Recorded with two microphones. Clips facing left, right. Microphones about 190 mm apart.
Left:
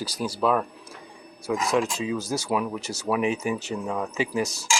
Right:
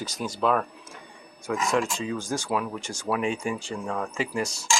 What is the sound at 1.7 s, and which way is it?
Speech, centre (ahead or behind).